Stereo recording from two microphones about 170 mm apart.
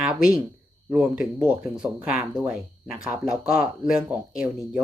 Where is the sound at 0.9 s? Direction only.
5° right (ahead or behind).